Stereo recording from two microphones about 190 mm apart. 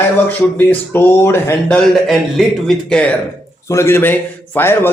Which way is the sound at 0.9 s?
10° left (ahead or behind).